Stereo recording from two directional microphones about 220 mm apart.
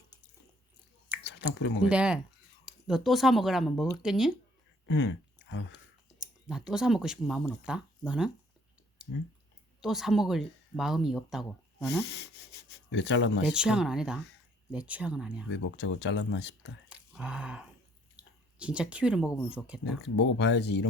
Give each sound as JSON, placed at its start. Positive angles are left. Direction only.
{"t": 1.2, "sound": "speech", "side_deg": 50}
{"t": 1.9, "sound": "speech", "side_deg": -5}
{"t": 4.9, "sound": "speech", "side_deg": 50}
{"t": 5.7, "sound": "speech", "side_deg": -5}
{"t": 9.8, "sound": "speech", "side_deg": 0}
{"t": 11.9, "sound": "speech", "side_deg": 50}
{"t": 13.4, "sound": "speech", "side_deg": -5}
{"t": 15.4, "sound": "speech", "side_deg": 55}
{"t": 16.9, "sound": "a sound", "side_deg": -5}
{"t": 18.2, "sound": "speech", "side_deg": -5}
{"t": 20.1, "sound": "speech", "side_deg": 55}